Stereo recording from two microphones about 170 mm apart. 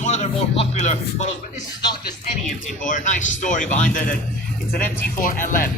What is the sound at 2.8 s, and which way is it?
Speech, 50° left (ahead or behind).